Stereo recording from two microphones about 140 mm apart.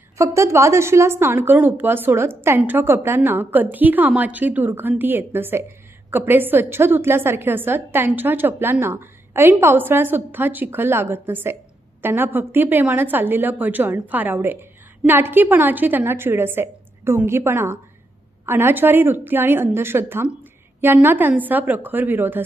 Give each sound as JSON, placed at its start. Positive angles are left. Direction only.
{"t": 0.2, "sound": "a woman's voice", "side_deg": -20}